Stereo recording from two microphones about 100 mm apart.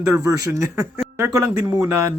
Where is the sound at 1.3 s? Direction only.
35° right (ahead or behind).